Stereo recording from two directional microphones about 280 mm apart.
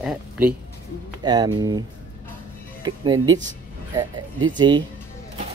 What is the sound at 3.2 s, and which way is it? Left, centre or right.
Speech, centre.